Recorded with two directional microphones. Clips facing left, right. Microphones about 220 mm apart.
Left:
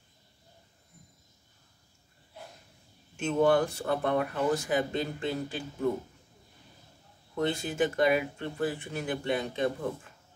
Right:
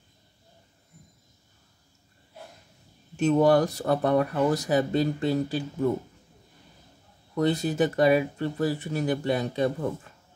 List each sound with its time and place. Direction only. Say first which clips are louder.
3.2 s speech: right 4 dB; 35° right (ahead or behind)
7.3 s speech: right 5 dB; 40° right (ahead or behind)